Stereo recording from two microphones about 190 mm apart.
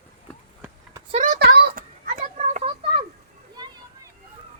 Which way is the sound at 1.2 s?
50° right (ahead or behind).